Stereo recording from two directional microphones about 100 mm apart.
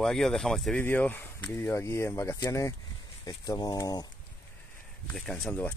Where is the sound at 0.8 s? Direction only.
20° left (ahead or behind); by 4.0 s 40° left (ahead or behind).